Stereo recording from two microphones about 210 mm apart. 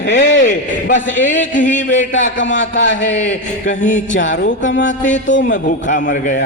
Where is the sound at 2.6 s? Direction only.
60° left (ahead or behind).